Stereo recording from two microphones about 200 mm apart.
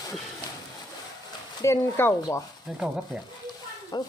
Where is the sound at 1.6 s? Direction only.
15° left (ahead or behind).